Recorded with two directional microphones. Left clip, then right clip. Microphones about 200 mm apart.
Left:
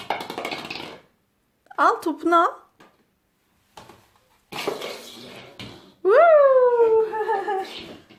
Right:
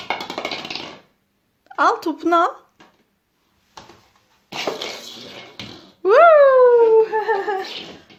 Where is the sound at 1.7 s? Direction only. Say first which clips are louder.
Right 2 dB; centre (ahead or behind).